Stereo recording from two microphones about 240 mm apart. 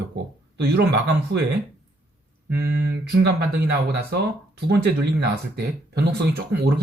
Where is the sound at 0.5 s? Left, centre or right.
Right.